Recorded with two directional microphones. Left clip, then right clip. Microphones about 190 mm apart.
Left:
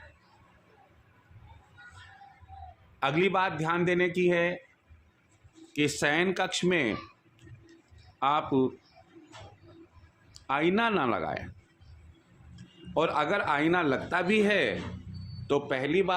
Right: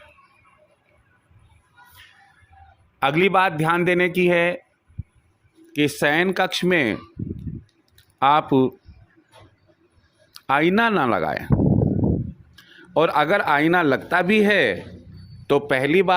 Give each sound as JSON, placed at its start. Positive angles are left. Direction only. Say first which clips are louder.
{"t": 3.0, "sound": "a man's voice", "louder": "right 9 dB", "side_deg": -45}
{"t": 5.7, "sound": "speech", "louder": "right 7 dB", "side_deg": -35}
{"t": 8.2, "sound": "a man's voice", "louder": "right 9 dB", "side_deg": -45}
{"t": 10.3, "sound": "speech", "louder": "right 9 dB", "side_deg": -40}
{"t": 12.5, "sound": "a man's voice", "louder": "right 9 dB", "side_deg": -40}